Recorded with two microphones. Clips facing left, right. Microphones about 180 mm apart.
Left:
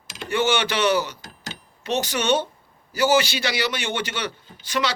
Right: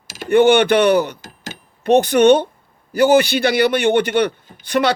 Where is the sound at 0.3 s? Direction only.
55° right (ahead or behind).